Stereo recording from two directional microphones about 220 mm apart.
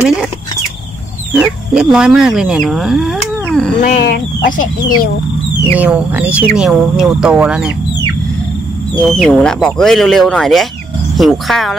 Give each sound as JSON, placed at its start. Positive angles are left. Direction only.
{"t": 1.3, "sound": "speech", "side_deg": -5}
{"t": 3.8, "sound": "speech", "side_deg": 35}
{"t": 5.8, "sound": "speech", "side_deg": -5}
{"t": 8.9, "sound": "speech", "side_deg": 5}